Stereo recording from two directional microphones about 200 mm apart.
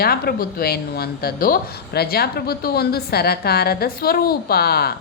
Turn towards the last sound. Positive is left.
turn(degrees=50)  # may be behind; listen again after turning